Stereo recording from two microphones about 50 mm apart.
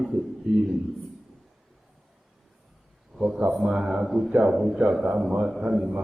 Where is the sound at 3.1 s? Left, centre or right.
Centre.